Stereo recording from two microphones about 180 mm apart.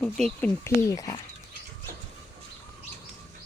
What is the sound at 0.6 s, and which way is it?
Speech, 15° left (ahead or behind).